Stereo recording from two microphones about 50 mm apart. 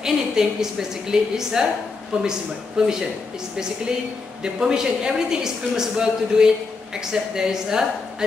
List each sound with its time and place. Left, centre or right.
0.0 s a man's voice: centre
4.4 s a man's voice: centre